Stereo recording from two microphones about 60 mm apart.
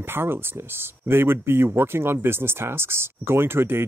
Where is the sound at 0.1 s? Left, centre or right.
Right.